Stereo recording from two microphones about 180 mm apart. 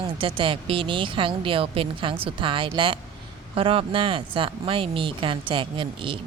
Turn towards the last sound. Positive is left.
turn(degrees=-30)  # may be behind; listen again after turning